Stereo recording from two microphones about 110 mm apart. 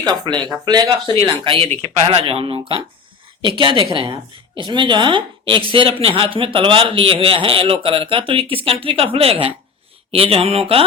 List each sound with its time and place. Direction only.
0.1 s speech: 40° right (ahead or behind)
1.3 s a woman's voice: 55° right (ahead or behind)